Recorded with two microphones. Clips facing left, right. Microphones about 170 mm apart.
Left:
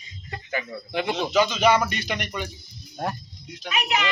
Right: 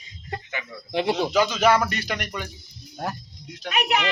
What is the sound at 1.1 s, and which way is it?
Speech, 10° right (ahead or behind).